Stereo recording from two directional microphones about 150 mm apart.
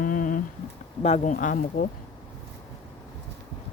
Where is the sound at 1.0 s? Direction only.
45° left (ahead or behind).